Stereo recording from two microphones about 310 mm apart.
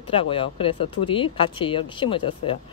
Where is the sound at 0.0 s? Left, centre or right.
Centre.